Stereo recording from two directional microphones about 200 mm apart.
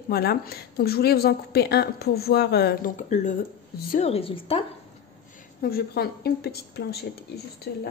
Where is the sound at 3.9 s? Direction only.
30° left (ahead or behind).